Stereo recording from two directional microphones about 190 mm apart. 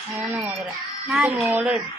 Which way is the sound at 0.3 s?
10° right (ahead or behind).